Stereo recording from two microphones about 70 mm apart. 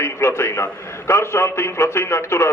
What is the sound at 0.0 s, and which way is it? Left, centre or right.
A man's voice, left.